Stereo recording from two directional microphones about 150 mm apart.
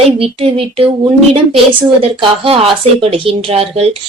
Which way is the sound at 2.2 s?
40° right (ahead or behind).